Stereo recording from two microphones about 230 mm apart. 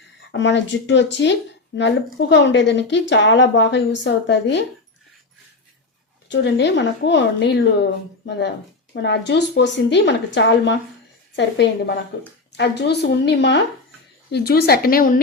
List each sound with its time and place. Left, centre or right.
0.3 s speech: left
6.2 s speech: left